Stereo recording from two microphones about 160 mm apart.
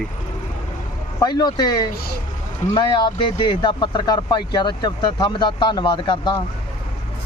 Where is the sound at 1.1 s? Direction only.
25° left (ahead or behind).